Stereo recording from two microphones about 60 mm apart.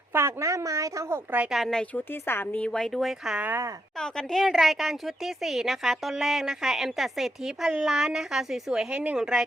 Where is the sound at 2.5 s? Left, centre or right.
Left.